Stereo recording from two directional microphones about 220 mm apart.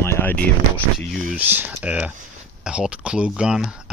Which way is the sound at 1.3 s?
5° right (ahead or behind).